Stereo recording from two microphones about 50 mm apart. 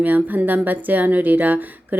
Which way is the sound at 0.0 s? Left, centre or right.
Right.